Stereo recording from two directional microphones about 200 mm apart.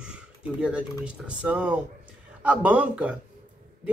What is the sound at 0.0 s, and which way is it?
Speech, 5° right (ahead or behind).